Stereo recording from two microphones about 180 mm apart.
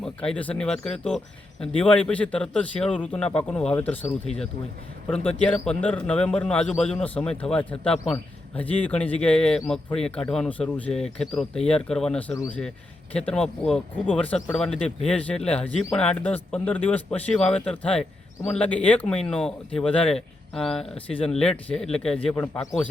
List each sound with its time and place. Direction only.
0.0 s a man's voice: 5° left (ahead or behind)
20.9 s speech: 30° left (ahead or behind)
21.2 s speech: 5° left (ahead or behind)